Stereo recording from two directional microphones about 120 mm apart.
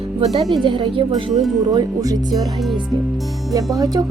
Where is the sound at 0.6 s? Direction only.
45° right (ahead or behind).